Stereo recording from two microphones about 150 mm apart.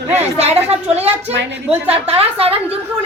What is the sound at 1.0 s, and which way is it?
A woman's voice, 45° right (ahead or behind).